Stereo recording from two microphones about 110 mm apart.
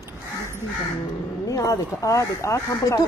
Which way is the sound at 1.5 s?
30° left (ahead or behind).